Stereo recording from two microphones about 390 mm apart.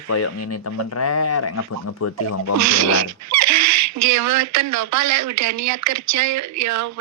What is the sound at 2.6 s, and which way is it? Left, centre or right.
Speech, right.